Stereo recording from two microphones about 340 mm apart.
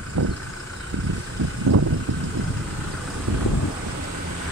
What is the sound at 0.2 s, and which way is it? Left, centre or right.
Vehicle, right.